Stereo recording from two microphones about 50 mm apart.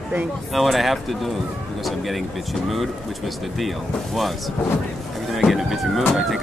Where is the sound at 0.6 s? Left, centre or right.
Centre.